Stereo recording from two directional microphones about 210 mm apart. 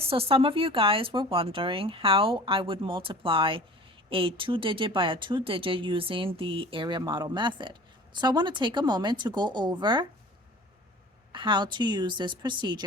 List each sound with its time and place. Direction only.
0.0 s speech: 25° right (ahead or behind)
11.3 s speech: 20° right (ahead or behind)